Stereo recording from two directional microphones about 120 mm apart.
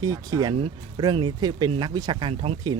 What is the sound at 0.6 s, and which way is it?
Speech, 40° right (ahead or behind).